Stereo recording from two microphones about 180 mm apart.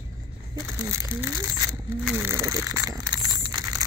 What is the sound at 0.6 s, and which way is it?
Speech, 15° right (ahead or behind).